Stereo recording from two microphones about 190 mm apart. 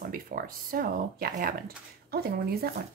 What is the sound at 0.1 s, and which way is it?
Speech, 50° right (ahead or behind).